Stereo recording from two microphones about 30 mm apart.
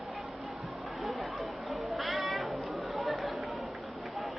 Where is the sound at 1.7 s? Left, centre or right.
Centre.